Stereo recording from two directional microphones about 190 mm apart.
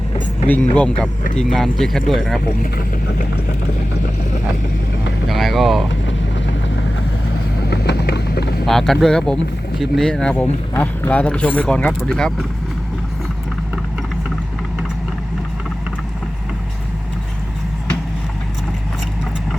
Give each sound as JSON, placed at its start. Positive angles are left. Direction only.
{"t": 0.4, "sound": "speech", "side_deg": 10}
{"t": 5.3, "sound": "speech", "side_deg": 0}
{"t": 7.7, "sound": "vehicle", "side_deg": 60}
{"t": 8.6, "sound": "speech", "side_deg": 0}